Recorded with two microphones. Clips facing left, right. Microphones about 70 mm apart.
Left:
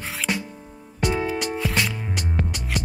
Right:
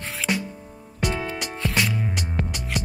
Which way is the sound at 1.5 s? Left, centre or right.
Centre.